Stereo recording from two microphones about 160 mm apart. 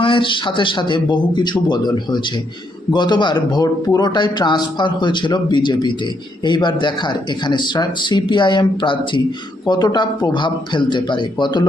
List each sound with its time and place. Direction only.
0.0 s speech: 30° left (ahead or behind)